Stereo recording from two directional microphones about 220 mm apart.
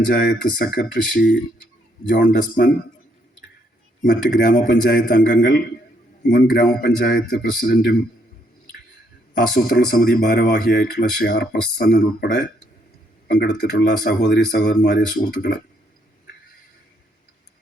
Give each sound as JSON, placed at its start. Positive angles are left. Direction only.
{"t": 0.2, "sound": "speech", "side_deg": 40}
{"t": 4.0, "sound": "a man's voice", "side_deg": 40}
{"t": 9.3, "sound": "a man's voice", "side_deg": 40}